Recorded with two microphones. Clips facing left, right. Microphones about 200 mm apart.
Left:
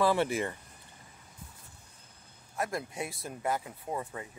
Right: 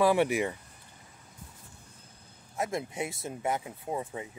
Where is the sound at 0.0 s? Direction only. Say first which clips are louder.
Right 3 dB; 15° right (ahead or behind).